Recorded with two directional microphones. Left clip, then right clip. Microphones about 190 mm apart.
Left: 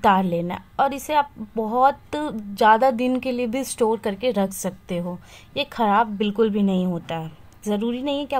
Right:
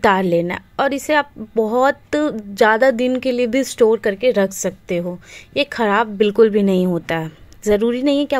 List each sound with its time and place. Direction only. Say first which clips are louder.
0.0 s speech: right 4 dB; 20° right (ahead or behind)